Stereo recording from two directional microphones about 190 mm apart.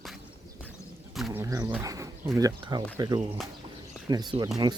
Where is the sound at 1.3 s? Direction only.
15° right (ahead or behind).